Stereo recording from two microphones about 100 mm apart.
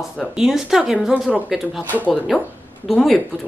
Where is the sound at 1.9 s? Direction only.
15° left (ahead or behind).